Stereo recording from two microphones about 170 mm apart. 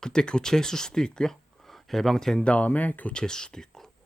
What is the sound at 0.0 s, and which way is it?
Speech, 5° left (ahead or behind).